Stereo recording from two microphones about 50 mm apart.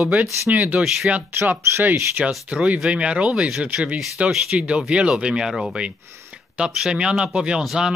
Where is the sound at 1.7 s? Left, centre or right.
Right.